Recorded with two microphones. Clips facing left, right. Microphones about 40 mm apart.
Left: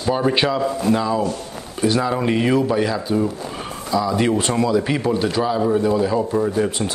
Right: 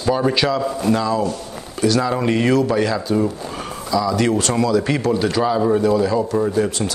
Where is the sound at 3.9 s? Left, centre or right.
Left; by 5.5 s centre.